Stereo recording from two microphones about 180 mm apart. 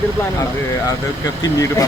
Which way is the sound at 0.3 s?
20° left (ahead or behind).